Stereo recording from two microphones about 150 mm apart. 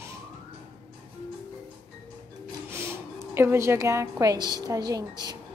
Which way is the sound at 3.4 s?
15° right (ahead or behind).